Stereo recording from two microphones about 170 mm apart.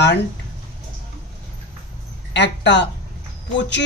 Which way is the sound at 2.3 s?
90° left.